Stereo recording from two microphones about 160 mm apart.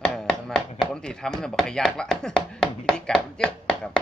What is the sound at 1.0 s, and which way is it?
Speech, 5° left (ahead or behind).